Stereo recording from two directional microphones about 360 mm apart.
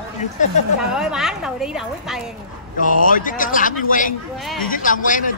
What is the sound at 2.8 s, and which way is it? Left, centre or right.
Speech, left.